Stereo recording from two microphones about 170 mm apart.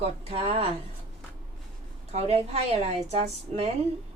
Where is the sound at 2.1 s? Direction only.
35° right (ahead or behind).